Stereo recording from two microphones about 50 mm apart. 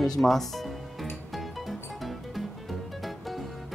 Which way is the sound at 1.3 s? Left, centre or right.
Centre.